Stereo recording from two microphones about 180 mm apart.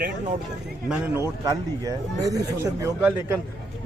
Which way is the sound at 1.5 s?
20° right (ahead or behind).